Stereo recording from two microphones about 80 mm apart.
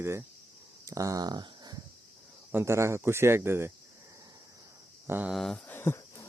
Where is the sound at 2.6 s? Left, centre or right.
Right.